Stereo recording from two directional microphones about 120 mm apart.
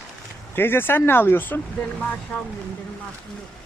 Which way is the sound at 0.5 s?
20° left (ahead or behind).